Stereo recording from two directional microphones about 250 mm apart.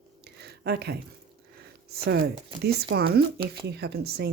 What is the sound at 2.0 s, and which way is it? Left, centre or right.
Speech, right.